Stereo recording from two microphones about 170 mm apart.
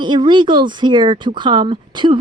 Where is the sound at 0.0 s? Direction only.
25° right (ahead or behind).